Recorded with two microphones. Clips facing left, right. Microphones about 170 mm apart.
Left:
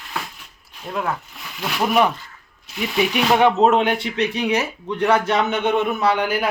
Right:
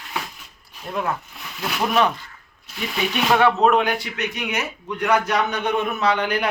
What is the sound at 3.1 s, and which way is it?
Speech, 15° left (ahead or behind).